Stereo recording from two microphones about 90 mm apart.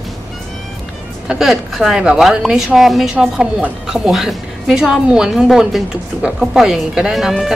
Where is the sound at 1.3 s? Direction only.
5° right (ahead or behind).